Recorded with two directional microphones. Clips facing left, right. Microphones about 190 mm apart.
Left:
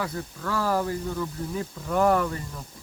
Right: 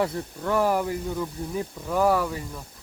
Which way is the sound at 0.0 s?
25° right (ahead or behind).